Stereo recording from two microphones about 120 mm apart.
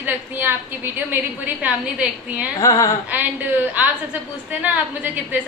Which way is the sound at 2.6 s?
30° left (ahead or behind).